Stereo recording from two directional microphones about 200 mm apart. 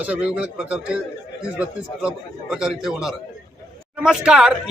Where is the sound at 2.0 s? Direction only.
5° right (ahead or behind).